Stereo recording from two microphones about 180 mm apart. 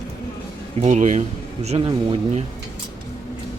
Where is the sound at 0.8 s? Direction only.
40° right (ahead or behind).